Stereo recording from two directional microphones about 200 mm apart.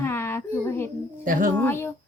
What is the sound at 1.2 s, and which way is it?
Speech, 40° right (ahead or behind).